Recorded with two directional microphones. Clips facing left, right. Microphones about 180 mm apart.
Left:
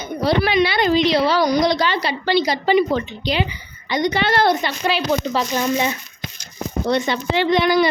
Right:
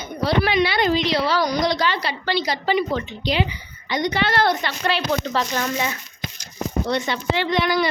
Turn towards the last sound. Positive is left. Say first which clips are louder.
# left 5 dB
turn(degrees=20)  # may be behind; listen again after turning